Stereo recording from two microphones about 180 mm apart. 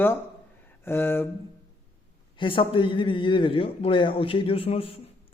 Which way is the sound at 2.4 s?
30° left (ahead or behind).